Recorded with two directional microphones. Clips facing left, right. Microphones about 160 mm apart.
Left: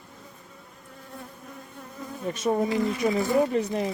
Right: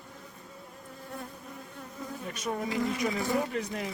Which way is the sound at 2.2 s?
30° left (ahead or behind).